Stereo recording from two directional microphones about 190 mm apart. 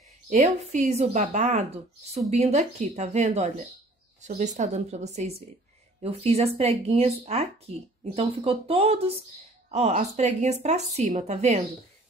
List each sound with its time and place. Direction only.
0.3 s a woman's voice: 35° right (ahead or behind)